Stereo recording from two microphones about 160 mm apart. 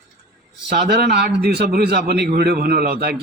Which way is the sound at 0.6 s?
80° right.